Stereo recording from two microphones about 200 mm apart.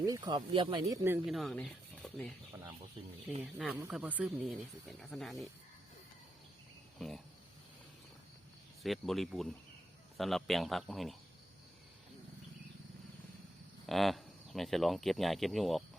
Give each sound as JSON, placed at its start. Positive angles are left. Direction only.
{"t": 0.0, "sound": "speech", "side_deg": -20}
{"t": 1.2, "sound": "speech", "side_deg": 0}
{"t": 3.4, "sound": "speech", "side_deg": 0}
{"t": 8.8, "sound": "speech", "side_deg": 0}
{"t": 13.8, "sound": "speech", "side_deg": 0}